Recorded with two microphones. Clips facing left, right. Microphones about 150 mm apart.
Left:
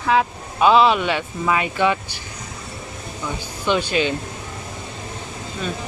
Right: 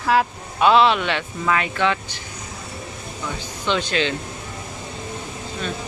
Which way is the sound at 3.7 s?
10° left (ahead or behind).